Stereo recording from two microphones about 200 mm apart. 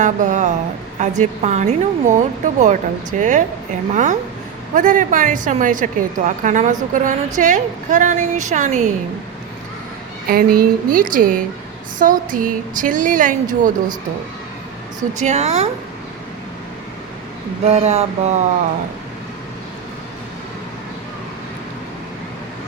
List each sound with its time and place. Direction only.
0.0 s a woman's voice: 40° right (ahead or behind)
10.2 s a woman's voice: 50° right (ahead or behind)
15.2 s a woman's voice: 35° right (ahead or behind)
17.7 s a woman's voice: 30° right (ahead or behind)